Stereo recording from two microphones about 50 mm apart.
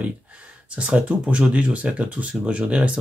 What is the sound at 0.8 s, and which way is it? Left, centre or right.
Speech, right.